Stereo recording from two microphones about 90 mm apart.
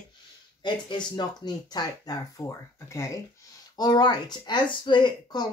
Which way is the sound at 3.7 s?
55° left (ahead or behind).